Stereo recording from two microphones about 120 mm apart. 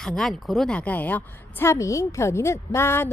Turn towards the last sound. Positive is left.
turn(degrees=20)  # may be behind; listen again after turning